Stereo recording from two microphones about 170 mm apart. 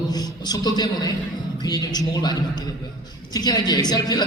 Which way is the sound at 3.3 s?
25° left (ahead or behind).